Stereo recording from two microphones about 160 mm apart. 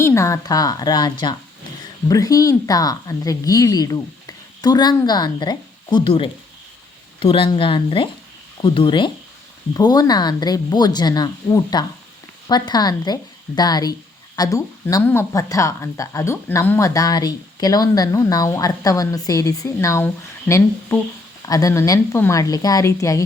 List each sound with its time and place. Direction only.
0.0 s a woman's voice: 20° left (ahead or behind)